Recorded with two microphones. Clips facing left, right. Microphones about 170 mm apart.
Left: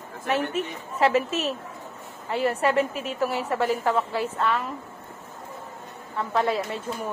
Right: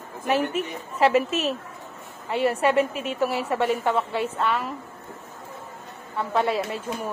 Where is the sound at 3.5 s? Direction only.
Centre (ahead or behind).